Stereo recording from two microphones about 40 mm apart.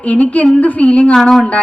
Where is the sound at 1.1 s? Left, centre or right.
Centre.